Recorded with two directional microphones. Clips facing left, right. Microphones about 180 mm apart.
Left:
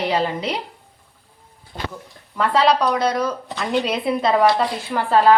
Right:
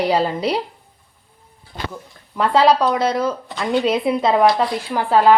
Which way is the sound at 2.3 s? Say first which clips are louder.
Right 3 dB; 25° right (ahead or behind).